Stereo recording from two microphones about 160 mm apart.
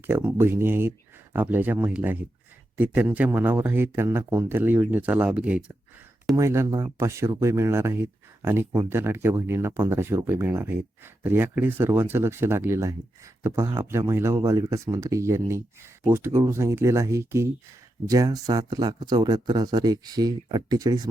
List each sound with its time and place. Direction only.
0.1 s speech: 15° right (ahead or behind)
6.3 s speech: 15° right (ahead or behind)